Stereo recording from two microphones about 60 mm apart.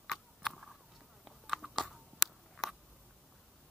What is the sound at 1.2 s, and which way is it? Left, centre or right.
Biting, centre.